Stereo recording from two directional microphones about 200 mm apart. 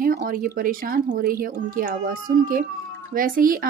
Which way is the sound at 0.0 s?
45° right (ahead or behind).